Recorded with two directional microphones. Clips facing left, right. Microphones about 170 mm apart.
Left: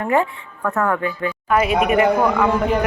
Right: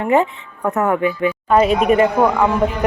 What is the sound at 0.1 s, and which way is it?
Speech, 20° right (ahead or behind).